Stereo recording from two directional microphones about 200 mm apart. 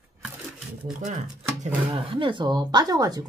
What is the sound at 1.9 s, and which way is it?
Speech, 25° right (ahead or behind).